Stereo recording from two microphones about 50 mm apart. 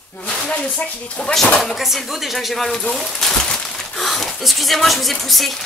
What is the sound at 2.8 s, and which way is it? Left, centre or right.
Speech, centre.